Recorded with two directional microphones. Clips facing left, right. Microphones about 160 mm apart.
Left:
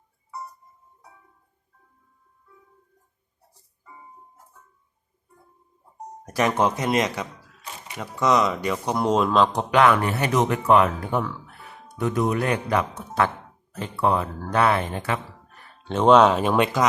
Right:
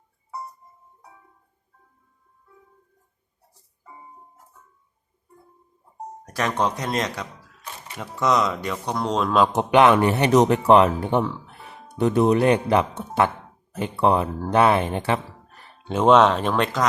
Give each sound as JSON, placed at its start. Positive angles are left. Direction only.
{"t": 6.2, "sound": "speech", "side_deg": 10}
{"t": 9.5, "sound": "speech", "side_deg": -20}
{"t": 15.8, "sound": "speech", "side_deg": -5}